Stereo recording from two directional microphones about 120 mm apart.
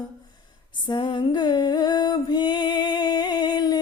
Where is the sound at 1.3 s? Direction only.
35° left (ahead or behind).